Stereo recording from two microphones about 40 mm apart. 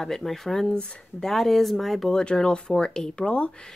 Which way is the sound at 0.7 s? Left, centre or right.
Left.